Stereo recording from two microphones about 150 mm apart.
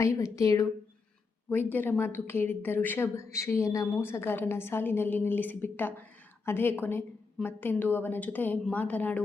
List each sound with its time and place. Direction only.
0.0 s a woman's voice: 20° left (ahead or behind)